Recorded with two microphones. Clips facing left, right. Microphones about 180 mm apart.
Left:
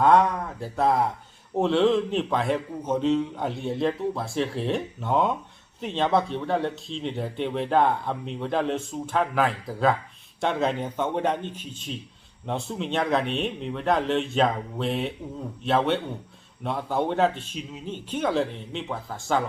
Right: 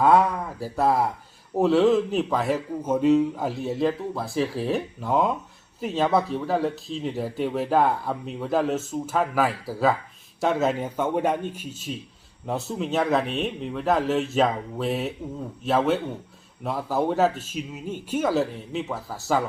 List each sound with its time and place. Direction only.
0.0 s a man's voice: 5° right (ahead or behind)